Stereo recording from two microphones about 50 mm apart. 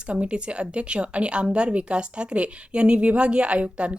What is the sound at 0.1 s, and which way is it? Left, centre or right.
Speech, right.